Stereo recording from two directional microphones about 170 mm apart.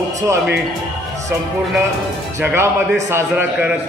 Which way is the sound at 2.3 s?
15° right (ahead or behind).